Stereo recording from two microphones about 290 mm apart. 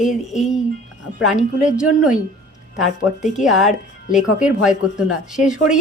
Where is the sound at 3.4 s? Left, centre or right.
Centre.